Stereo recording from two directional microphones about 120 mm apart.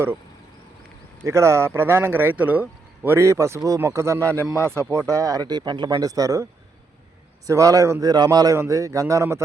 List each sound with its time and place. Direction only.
1.2 s speech: 25° right (ahead or behind)